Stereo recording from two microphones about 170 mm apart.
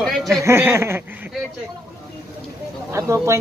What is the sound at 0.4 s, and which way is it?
Speech, 15° right (ahead or behind).